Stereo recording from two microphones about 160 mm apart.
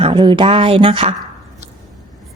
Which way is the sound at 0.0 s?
30° right (ahead or behind).